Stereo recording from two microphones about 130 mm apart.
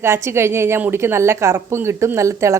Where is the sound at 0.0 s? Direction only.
20° right (ahead or behind).